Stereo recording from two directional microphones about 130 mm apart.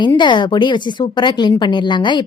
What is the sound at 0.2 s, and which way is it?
A woman's voice, 35° left (ahead or behind).